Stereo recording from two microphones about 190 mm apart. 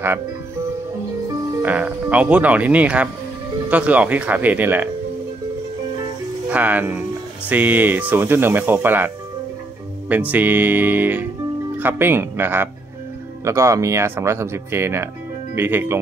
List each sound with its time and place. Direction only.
1.6 s speech: 10° right (ahead or behind)
6.5 s speech: 10° right (ahead or behind)